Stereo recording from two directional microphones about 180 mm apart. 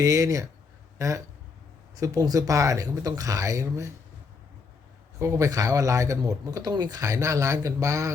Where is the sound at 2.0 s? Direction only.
20° right (ahead or behind).